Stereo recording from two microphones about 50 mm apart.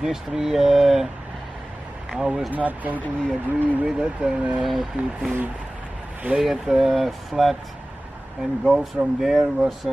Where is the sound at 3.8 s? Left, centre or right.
Centre.